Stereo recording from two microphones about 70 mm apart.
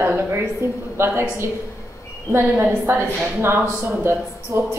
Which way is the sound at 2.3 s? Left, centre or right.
Right.